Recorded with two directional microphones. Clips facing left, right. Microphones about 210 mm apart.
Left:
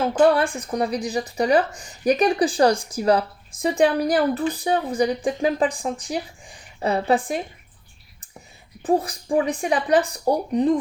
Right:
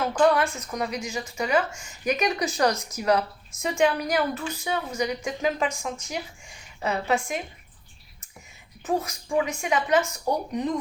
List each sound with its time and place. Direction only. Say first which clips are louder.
0.0 s speech: left 4 dB; 30° left (ahead or behind)
8.8 s speech: left 6 dB; 30° left (ahead or behind)